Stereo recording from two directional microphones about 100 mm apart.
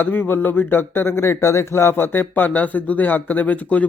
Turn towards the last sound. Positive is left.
turn(degrees=15)  # may be behind; listen again after turning